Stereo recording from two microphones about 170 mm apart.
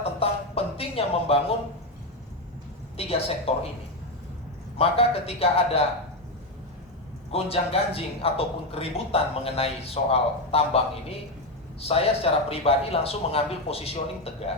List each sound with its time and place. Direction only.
0.0 s a sound: 35° left (ahead or behind)
3.0 s a man's voice: 35° left (ahead or behind)
4.8 s a man's voice: 35° left (ahead or behind)
7.3 s a man's voice: 35° left (ahead or behind)
11.8 s a man's voice: 35° left (ahead or behind)